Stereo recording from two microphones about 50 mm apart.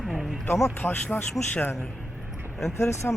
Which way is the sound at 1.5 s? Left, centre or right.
Left.